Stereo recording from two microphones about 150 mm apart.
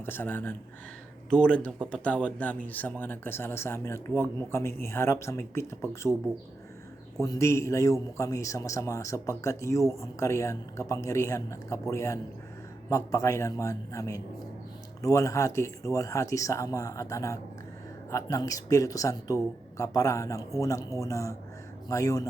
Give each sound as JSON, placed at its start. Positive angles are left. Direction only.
{"t": 0.0, "sound": "speech", "side_deg": 15}
{"t": 7.2, "sound": "a man's voice", "side_deg": 20}